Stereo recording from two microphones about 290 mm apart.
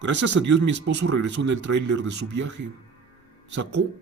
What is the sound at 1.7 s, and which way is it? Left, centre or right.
Speech, right.